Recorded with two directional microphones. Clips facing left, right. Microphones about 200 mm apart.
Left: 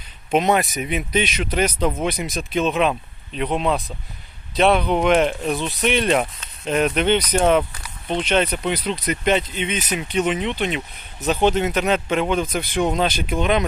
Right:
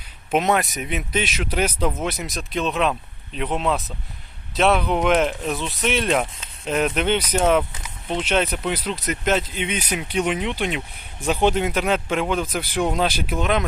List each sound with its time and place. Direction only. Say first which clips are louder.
0.3 s speech: left 2 dB; centre (ahead or behind)